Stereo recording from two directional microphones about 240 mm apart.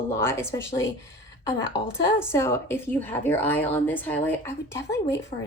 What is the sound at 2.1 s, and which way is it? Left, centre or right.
A woman's voice, centre.